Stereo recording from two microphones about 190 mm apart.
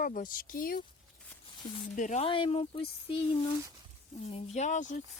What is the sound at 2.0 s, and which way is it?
Speech, 40° left (ahead or behind).